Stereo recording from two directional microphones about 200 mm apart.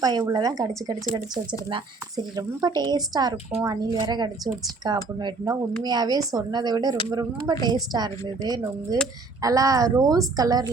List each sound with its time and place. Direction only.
0.0 s a woman's voice: 20° right (ahead or behind)